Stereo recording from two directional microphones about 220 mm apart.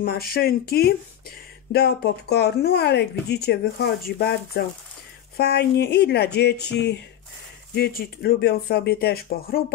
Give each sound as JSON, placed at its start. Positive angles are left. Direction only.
{"t": 0.0, "sound": "speech", "side_deg": 45}